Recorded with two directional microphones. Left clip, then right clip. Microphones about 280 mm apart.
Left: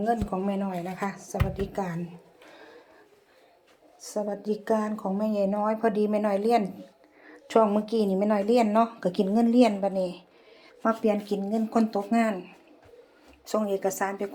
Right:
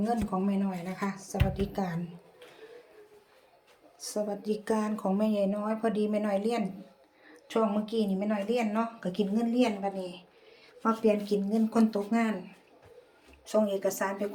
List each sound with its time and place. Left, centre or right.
0.0 s speech: centre
4.0 s a woman's voice: centre
13.4 s a woman's voice: centre